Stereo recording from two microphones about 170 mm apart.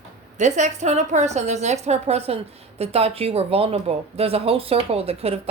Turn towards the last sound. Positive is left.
turn(degrees=-35)  # may be behind; listen again after turning